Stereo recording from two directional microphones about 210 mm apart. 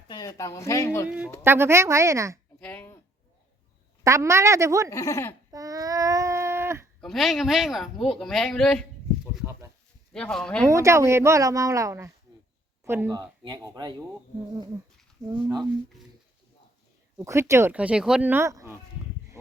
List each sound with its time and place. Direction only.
0.1 s speech: 15° left (ahead or behind)
1.0 s speech: 5° right (ahead or behind)
2.6 s finger snapping: 10° left (ahead or behind)
4.0 s speech: 15° right (ahead or behind)
4.9 s speech: 15° left (ahead or behind)
5.5 s babbling: 15° right (ahead or behind)
7.0 s speech: centre (ahead or behind)
9.2 s a sound: 5° right (ahead or behind)
10.1 s speech: 5° left (ahead or behind)
10.7 s speech: 15° right (ahead or behind)
15.3 s speech: 20° right (ahead or behind)
17.2 s speech: 15° right (ahead or behind)